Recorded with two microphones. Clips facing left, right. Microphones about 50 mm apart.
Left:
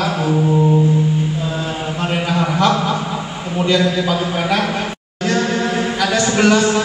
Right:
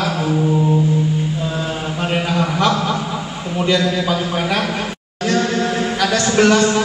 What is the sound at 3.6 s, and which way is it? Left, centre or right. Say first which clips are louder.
Speech: left 1 dB; centre.